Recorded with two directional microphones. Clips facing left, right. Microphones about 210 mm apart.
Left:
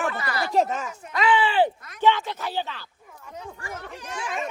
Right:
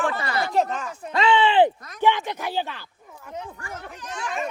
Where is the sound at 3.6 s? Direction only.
10° left (ahead or behind).